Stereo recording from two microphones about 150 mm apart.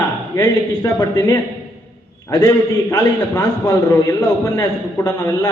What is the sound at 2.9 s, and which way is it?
A man's voice, 25° left (ahead or behind).